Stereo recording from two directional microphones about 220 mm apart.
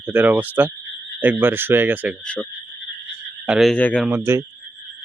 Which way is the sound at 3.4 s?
Centre (ahead or behind).